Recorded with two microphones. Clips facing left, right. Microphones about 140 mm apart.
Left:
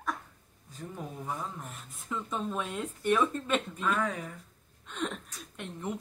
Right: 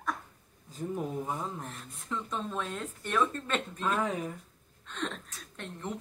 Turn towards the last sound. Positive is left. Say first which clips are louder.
# left 2 dB
turn(degrees=10)  # may be behind; listen again after turning